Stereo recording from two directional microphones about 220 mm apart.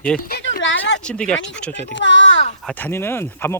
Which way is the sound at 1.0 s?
5° left (ahead or behind).